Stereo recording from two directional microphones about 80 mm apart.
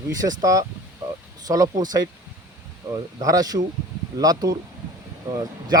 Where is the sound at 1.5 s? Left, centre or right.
Right.